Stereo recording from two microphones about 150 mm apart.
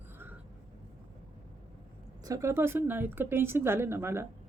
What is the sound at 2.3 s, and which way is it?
A woman's voice, 20° right (ahead or behind).